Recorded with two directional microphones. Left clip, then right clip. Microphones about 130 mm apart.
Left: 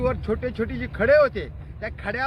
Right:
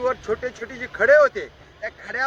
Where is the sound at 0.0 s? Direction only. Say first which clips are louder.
Right 2 dB; 15° left (ahead or behind).